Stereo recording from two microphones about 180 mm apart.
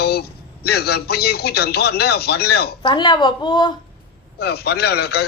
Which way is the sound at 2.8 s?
25° left (ahead or behind).